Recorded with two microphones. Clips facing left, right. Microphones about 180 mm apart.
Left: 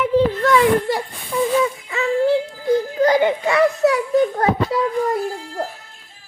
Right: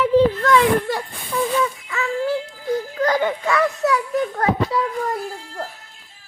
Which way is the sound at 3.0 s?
20° left (ahead or behind).